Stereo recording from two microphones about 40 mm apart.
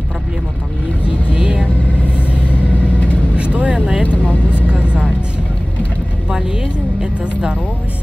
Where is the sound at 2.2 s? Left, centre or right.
Left.